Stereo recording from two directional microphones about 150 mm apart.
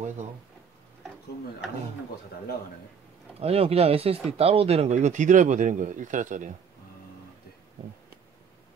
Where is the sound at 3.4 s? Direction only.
40° right (ahead or behind); by 6.5 s 55° right (ahead or behind).